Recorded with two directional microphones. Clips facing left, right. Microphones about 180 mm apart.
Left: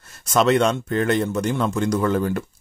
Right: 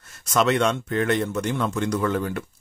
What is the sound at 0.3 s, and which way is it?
A man's voice, 35° left (ahead or behind).